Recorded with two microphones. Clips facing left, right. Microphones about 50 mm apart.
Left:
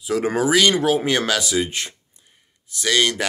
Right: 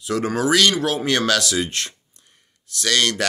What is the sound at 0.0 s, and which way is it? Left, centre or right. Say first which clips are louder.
Speech: left 1 dB; centre.